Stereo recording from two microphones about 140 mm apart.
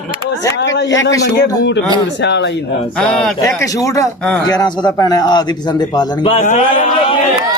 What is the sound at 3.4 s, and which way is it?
A man's voice, 25° left (ahead or behind).